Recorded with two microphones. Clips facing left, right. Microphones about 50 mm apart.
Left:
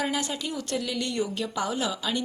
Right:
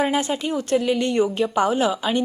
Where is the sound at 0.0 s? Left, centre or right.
Right.